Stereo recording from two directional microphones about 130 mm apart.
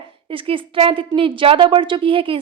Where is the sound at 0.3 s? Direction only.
45° right (ahead or behind).